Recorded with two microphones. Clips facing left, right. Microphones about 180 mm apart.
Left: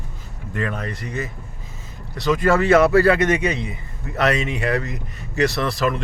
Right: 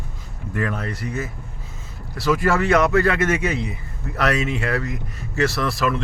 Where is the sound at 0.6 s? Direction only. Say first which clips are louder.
Right 1 dB; 15° left (ahead or behind).